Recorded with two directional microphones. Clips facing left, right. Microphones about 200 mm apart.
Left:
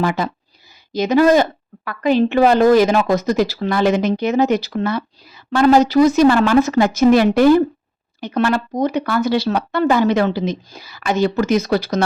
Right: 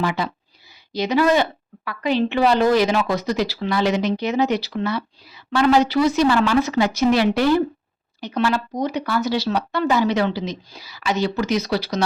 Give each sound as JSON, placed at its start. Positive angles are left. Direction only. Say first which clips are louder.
{"t": 0.0, "sound": "a woman's voice", "louder": "left 4 dB", "side_deg": 45}